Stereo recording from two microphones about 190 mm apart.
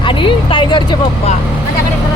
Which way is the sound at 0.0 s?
25° left (ahead or behind).